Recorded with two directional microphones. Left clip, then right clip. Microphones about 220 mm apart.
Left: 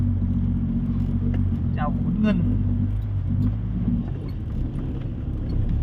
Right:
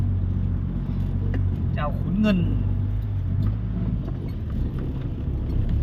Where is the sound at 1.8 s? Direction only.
15° right (ahead or behind).